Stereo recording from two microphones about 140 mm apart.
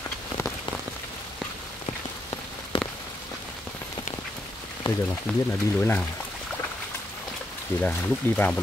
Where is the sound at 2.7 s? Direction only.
40° left (ahead or behind).